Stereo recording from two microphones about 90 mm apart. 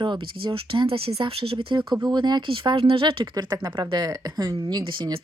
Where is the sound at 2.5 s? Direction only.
80° right.